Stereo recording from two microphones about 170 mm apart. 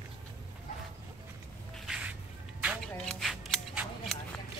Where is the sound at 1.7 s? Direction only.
5° right (ahead or behind).